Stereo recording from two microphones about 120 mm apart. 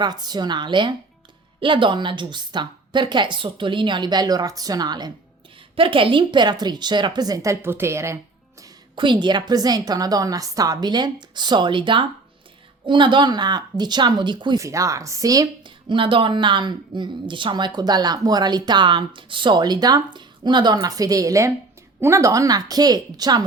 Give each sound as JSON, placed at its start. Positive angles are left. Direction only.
{"t": 0.0, "sound": "speech", "side_deg": -35}
{"t": 5.7, "sound": "speech", "side_deg": -45}
{"t": 9.0, "sound": "speech", "side_deg": -40}
{"t": 14.6, "sound": "a woman's voice", "side_deg": -25}
{"t": 15.6, "sound": "a woman's voice", "side_deg": -45}